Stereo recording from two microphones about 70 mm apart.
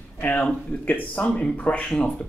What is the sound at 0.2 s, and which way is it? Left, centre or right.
A man's voice, left.